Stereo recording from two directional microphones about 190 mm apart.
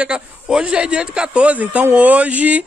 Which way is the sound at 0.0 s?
5° right (ahead or behind).